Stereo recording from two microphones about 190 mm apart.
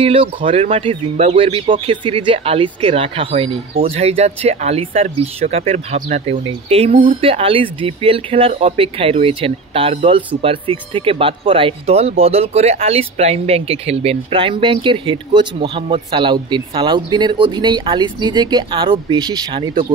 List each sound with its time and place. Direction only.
0.0 s speech: 30° right (ahead or behind)